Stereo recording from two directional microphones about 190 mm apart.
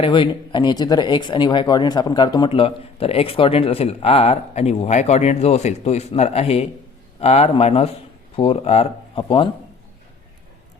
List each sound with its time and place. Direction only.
0.0 s speech: 25° left (ahead or behind)